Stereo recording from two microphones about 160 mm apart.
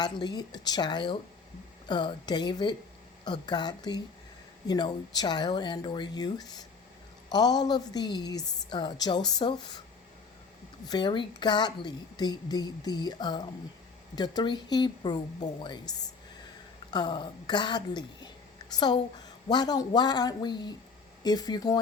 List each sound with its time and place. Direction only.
0.0 s a woman's voice: 25° left (ahead or behind)
10.8 s a woman's voice: 30° left (ahead or behind)